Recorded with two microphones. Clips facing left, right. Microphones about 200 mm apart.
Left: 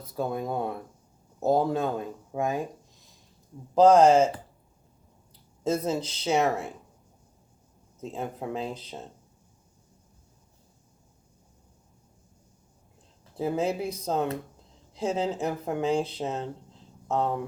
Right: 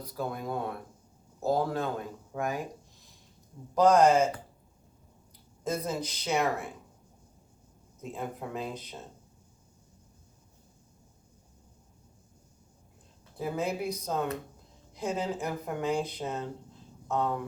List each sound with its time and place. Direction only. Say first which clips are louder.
0.0 s speech: left 4 dB; 25° left (ahead or behind)
3.8 s speech: left 4 dB; 25° left (ahead or behind)
5.6 s speech: left 5 dB; 25° left (ahead or behind)
8.0 s speech: left 4 dB; 25° left (ahead or behind)
13.3 s speech: left 5 dB; 25° left (ahead or behind)